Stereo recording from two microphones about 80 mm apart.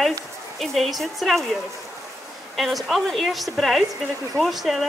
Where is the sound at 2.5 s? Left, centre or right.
Centre.